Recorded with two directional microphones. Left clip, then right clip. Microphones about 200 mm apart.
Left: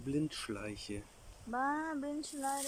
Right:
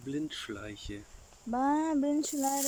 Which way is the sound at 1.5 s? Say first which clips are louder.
Right 6 dB; 20° right (ahead or behind).